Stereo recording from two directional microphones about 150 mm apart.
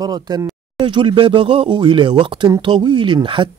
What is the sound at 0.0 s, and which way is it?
A man's voice, 25° right (ahead or behind).